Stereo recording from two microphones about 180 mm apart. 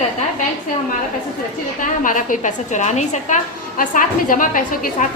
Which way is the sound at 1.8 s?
45° left (ahead or behind).